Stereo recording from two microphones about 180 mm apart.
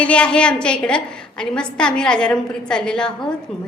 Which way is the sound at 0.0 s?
5° left (ahead or behind).